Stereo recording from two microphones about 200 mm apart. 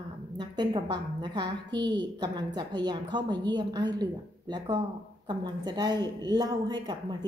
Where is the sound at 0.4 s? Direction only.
20° right (ahead or behind).